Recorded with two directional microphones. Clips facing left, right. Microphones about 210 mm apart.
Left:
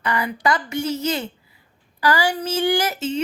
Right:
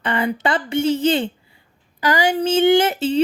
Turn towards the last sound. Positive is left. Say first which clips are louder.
# right 6 dB
turn(degrees=-35)  # may be behind; listen again after turning